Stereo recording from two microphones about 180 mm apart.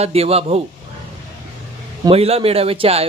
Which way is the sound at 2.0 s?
35° right (ahead or behind).